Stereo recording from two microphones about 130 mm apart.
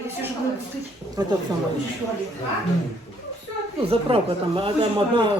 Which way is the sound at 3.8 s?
45° right (ahead or behind).